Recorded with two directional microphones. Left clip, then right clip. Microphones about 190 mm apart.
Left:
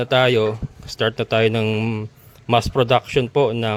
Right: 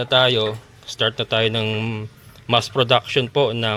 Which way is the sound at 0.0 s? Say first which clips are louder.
Even; 40° left (ahead or behind).